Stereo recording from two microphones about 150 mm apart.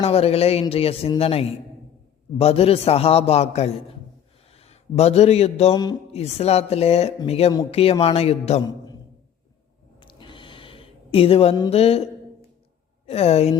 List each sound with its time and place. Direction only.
0.0 s a man's voice: 40° left (ahead or behind)
5.7 s music: 25° left (ahead or behind)
6.1 s a man's voice: 45° left (ahead or behind)
10.0 s a sound: 35° left (ahead or behind)
11.7 s a man's voice: 40° left (ahead or behind)
13.1 s a man's voice: 45° left (ahead or behind)